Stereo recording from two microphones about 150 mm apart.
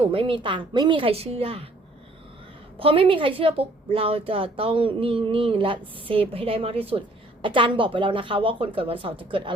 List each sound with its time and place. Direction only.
0.0 s a woman's voice: 35° right (ahead or behind)
2.7 s a woman's voice: 35° right (ahead or behind)